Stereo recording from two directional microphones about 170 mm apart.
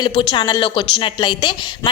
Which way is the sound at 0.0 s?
25° left (ahead or behind).